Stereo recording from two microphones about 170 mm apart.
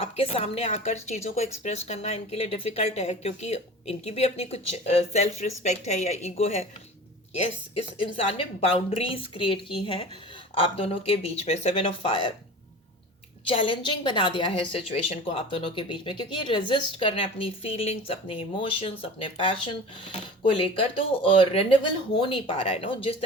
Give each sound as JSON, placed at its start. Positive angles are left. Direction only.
{"t": 0.0, "sound": "a woman's voice", "side_deg": 35}
{"t": 8.1, "sound": "a woman's voice", "side_deg": 35}
{"t": 13.4, "sound": "a woman's voice", "side_deg": 30}